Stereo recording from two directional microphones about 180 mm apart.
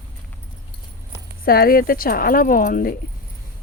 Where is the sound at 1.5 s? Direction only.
55° left (ahead or behind).